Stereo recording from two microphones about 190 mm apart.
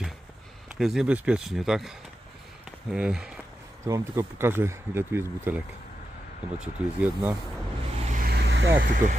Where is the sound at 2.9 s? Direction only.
5° right (ahead or behind).